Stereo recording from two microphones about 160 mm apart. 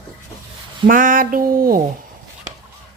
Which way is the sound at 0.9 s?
55° right (ahead or behind).